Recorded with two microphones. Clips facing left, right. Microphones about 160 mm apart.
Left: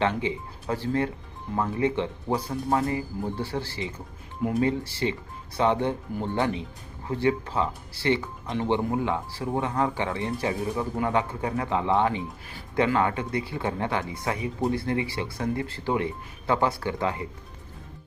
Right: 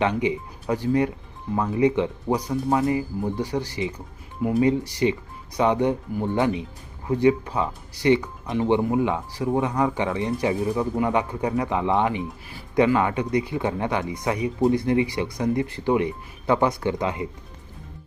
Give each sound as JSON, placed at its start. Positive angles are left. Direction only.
{"t": 0.0, "sound": "speech", "side_deg": -15}